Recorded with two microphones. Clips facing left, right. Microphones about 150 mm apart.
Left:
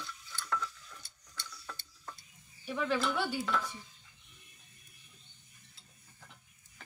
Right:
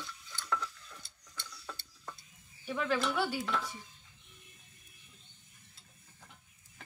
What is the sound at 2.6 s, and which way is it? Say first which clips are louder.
Speech: even; centre (ahead or behind).